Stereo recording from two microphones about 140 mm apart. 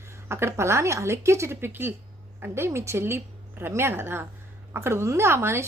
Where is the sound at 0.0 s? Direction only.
20° right (ahead or behind).